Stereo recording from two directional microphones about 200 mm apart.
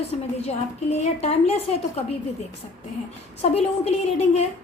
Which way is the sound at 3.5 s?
30° left (ahead or behind).